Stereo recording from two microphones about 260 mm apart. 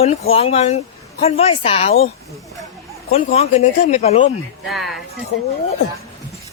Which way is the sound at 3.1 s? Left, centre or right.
Left.